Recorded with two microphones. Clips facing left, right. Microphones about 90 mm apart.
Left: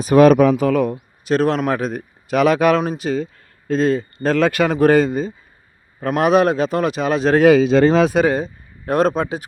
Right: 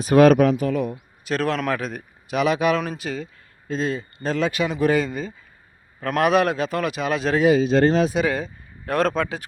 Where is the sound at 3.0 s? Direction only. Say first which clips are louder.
Left 8 dB; 30° left (ahead or behind).